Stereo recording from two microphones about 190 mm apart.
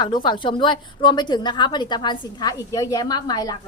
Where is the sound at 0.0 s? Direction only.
25° left (ahead or behind).